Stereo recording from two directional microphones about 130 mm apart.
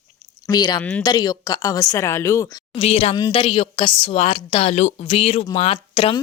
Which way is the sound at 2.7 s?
50° left (ahead or behind).